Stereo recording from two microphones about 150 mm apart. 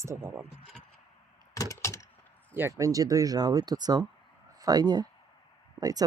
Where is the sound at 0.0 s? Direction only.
20° right (ahead or behind).